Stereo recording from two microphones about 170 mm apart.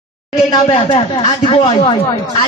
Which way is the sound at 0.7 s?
30° left (ahead or behind).